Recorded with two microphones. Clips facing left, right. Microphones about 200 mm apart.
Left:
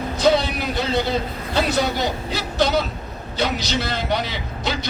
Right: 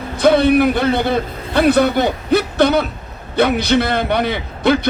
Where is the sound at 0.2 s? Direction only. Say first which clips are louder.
Right 8 dB; 55° right (ahead or behind).